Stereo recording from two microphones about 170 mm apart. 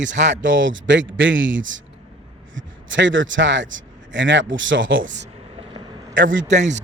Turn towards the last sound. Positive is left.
turn(degrees=-45)  # may be behind; listen again after turning